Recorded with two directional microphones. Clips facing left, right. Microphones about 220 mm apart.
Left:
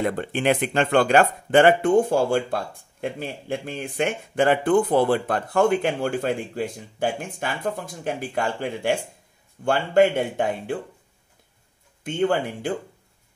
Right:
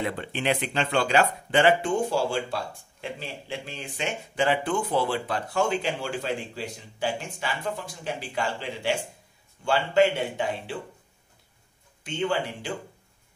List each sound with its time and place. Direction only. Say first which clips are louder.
0.0 s speech: left 6 dB; 50° left (ahead or behind)
12.0 s speech: left 5 dB; 50° left (ahead or behind)